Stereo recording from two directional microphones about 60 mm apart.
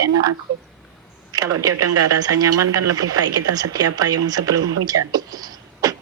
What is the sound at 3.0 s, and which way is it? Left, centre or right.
Speech, right.